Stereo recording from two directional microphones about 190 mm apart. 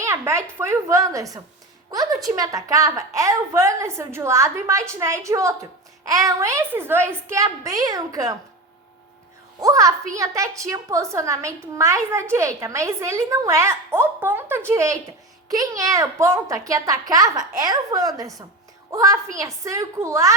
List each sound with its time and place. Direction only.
0.0 s a woman's voice: 15° right (ahead or behind)
9.6 s a woman's voice: 20° right (ahead or behind)